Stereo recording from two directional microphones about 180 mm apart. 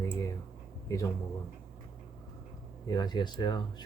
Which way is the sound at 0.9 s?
15° left (ahead or behind).